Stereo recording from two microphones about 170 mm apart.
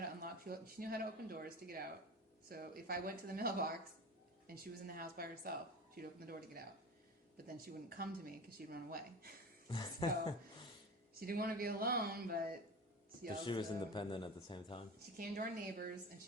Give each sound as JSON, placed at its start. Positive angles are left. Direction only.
{"t": 0.2, "sound": "speech", "side_deg": -60}
{"t": 9.6, "sound": "a man's voice", "side_deg": 25}
{"t": 11.2, "sound": "speech", "side_deg": -60}
{"t": 13.4, "sound": "a man's voice", "side_deg": 30}
{"t": 14.9, "sound": "speech", "side_deg": -60}